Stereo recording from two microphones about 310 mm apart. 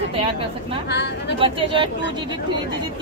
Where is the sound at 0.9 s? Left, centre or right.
Left.